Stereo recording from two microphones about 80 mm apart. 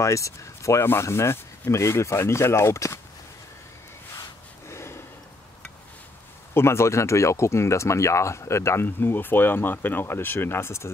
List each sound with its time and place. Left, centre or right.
0.0 s speech: left
4.6 s a sound: left
6.5 s speech: left
8.8 s speech: left